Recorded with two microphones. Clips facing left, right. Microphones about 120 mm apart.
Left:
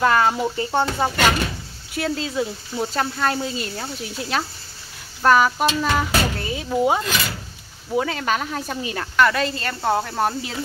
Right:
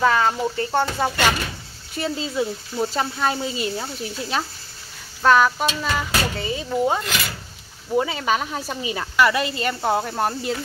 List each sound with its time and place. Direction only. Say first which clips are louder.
0.0 s speech: left 1 dB; centre (ahead or behind)
2.0 s speech: left 1 dB; centre (ahead or behind)
7.9 s speech: right 1 dB; 5° right (ahead or behind)